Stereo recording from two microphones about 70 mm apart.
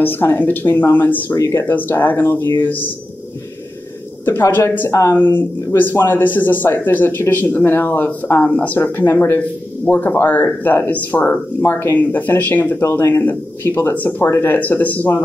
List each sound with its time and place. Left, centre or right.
0.0 s speech: left
1.3 s speech: left
1.7 s speech: left
4.3 s speech: left
5.1 s speech: left
12.8 s speech: left